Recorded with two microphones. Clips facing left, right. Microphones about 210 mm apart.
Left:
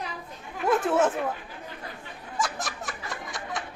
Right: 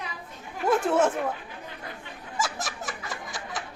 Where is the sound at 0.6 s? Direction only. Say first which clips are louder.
Even; centre (ahead or behind).